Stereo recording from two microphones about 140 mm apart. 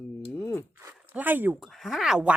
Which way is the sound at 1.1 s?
15° right (ahead or behind).